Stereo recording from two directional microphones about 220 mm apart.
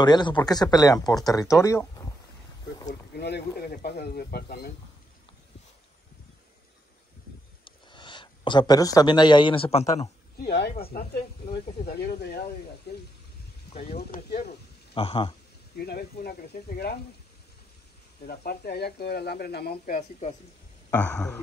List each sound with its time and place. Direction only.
0.0 s speech: 20° left (ahead or behind)
2.9 s speech: 50° left (ahead or behind)
7.6 s speech: 20° left (ahead or behind)
10.3 s speech: 50° left (ahead or behind)
12.9 s a sound: 50° left (ahead or behind)
13.9 s speech: 45° left (ahead or behind)
15.0 s a man's voice: 25° left (ahead or behind)
15.7 s speech: 45° left (ahead or behind)
18.2 s speech: 45° left (ahead or behind)
20.0 s speech: 30° left (ahead or behind)
20.9 s speech: 5° left (ahead or behind)